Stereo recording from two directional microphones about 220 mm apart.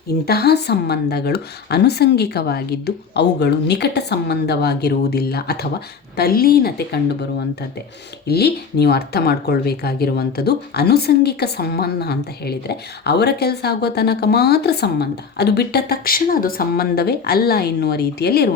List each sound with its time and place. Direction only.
0.1 s speech: 45° left (ahead or behind)
8.3 s speech: 45° left (ahead or behind)